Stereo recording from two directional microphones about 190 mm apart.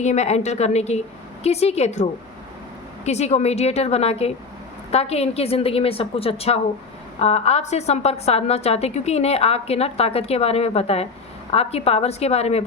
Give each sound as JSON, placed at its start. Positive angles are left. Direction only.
{"t": 0.0, "sound": "a woman's voice", "side_deg": 35}